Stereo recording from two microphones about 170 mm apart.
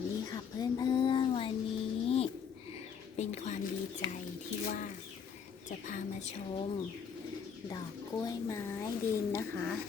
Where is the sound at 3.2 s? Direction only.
40° left (ahead or behind).